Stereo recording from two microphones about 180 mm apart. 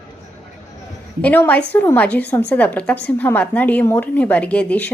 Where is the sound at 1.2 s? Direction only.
10° left (ahead or behind).